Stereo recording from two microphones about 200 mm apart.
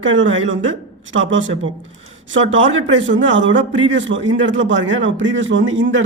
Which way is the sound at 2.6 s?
70° right (ahead or behind).